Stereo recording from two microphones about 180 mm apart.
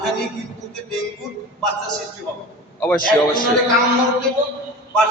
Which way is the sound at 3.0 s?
50° left (ahead or behind).